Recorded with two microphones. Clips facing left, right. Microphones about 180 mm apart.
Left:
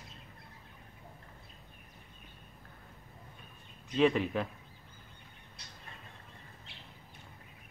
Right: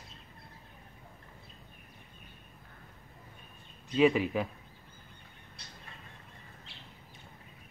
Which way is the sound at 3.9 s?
5° right (ahead or behind).